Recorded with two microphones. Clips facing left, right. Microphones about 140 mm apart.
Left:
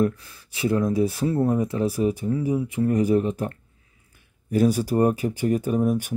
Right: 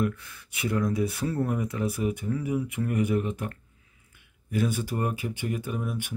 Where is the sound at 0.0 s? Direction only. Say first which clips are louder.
Left 6 dB; 35° left (ahead or behind).